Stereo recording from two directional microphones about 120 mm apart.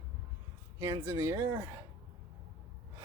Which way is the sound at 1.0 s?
20° right (ahead or behind).